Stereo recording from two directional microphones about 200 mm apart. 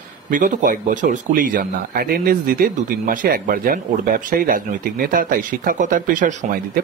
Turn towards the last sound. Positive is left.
turn(degrees=-40)  # may be behind; listen again after turning